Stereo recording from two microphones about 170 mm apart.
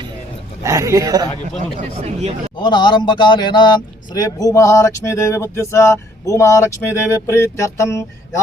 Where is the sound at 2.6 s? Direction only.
25° left (ahead or behind).